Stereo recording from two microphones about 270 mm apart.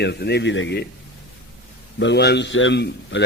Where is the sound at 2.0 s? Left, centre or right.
Left.